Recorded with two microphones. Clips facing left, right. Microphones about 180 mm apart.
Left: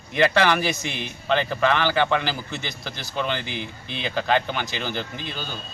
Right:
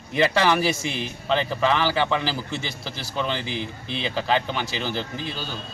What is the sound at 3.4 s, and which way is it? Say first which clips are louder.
Speech: right 3 dB; 35° right (ahead or behind).